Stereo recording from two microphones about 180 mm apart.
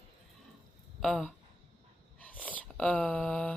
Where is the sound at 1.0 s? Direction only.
Centre (ahead or behind).